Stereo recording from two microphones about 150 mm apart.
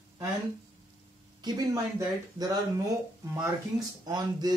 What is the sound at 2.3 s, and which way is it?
Speech, 25° right (ahead or behind).